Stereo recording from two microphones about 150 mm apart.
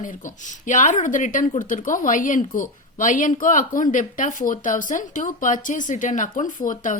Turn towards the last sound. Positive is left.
turn(degrees=60)  # may be behind; listen again after turning